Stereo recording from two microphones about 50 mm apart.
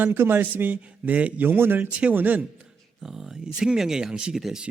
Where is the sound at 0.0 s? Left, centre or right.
Right.